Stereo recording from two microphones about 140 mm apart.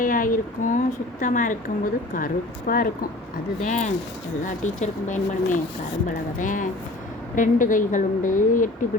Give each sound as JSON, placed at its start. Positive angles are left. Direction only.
{"t": 0.0, "sound": "a sound", "side_deg": 75}
{"t": 1.2, "sound": "a woman's voice", "side_deg": 65}
{"t": 3.6, "sound": "a woman's voice", "side_deg": 60}